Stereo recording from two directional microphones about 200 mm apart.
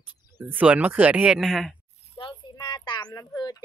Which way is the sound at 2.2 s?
20° left (ahead or behind).